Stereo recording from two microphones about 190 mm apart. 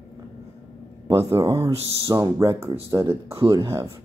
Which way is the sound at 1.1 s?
15° right (ahead or behind).